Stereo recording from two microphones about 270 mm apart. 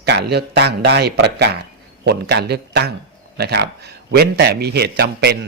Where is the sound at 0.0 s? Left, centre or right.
Right.